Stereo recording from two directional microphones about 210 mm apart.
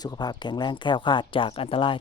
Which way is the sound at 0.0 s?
20° left (ahead or behind).